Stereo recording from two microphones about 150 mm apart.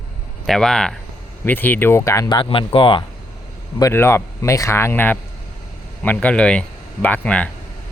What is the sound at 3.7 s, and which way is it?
Speech, 20° left (ahead or behind).